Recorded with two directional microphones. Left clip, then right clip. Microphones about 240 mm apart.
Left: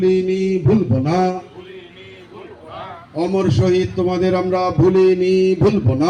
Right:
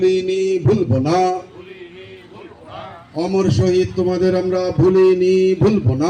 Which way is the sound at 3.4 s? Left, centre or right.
Centre.